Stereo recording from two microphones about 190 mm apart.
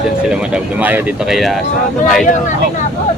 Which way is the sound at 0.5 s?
10° right (ahead or behind).